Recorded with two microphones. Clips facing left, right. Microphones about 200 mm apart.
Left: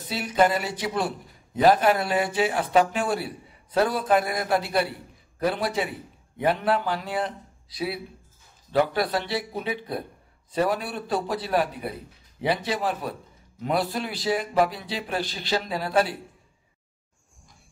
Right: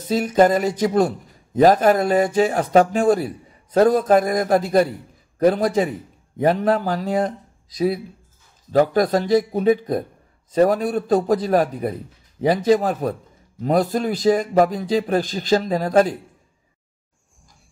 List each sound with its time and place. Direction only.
0.1 s a man's voice: 45° right (ahead or behind)